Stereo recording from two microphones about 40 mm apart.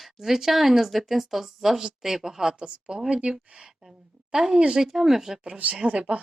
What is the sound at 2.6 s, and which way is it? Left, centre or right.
Speech, right.